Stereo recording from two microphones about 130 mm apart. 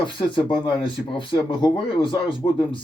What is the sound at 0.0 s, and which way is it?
Speech, 40° left (ahead or behind).